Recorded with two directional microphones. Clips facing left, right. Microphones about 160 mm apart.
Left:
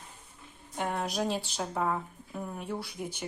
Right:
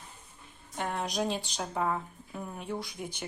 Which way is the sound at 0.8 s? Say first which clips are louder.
Left 1 dB; 10° left (ahead or behind).